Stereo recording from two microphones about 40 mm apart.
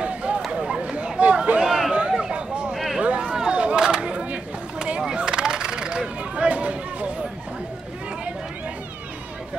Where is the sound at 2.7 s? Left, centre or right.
Centre.